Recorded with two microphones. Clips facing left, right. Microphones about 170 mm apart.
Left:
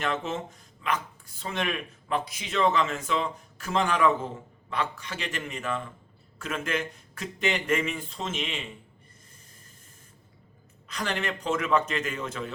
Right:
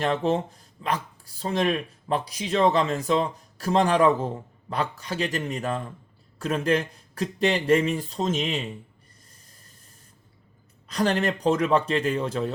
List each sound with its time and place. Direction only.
0.0 s speech: 35° right (ahead or behind)
10.8 s speech: 35° right (ahead or behind)